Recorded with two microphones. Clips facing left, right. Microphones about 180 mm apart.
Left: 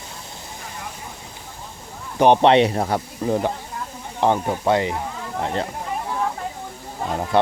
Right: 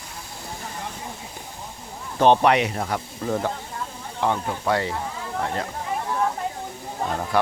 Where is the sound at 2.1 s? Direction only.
15° left (ahead or behind).